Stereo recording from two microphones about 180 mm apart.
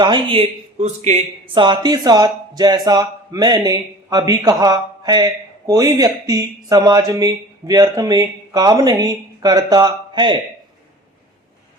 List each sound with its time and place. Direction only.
0.0 s speech: 25° right (ahead or behind)
1.5 s speech: 25° right (ahead or behind)